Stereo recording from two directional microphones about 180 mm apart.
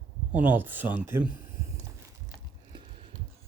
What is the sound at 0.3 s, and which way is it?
Speech, 10° right (ahead or behind).